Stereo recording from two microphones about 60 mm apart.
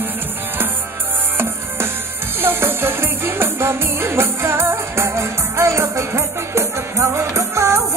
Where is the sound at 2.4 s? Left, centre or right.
Right.